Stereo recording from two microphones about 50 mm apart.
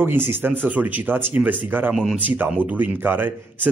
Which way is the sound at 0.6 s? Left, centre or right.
Right.